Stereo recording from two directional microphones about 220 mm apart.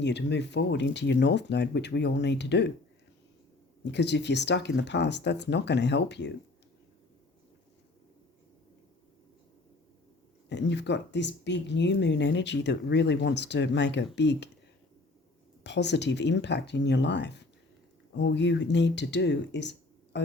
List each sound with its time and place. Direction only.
0.0 s speech: 50° left (ahead or behind)
3.9 s speech: 50° left (ahead or behind)
10.5 s speech: 50° left (ahead or behind)
15.6 s speech: 50° left (ahead or behind)
20.1 s music: 50° left (ahead or behind)